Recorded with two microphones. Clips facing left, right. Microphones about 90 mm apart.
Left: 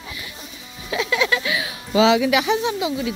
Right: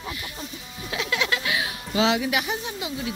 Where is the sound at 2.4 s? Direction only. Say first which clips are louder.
Left 10 dB; 90° left.